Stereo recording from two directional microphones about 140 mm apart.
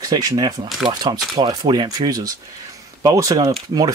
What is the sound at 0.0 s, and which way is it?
Speech, 25° right (ahead or behind).